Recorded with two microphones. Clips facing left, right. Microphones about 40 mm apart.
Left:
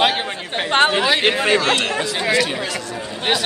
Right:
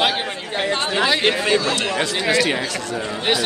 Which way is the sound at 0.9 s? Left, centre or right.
Centre.